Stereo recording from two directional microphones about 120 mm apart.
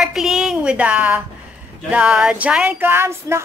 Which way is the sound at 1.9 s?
10° right (ahead or behind).